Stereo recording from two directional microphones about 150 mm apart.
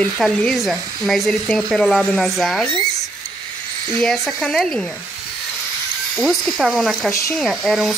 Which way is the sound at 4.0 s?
5° left (ahead or behind).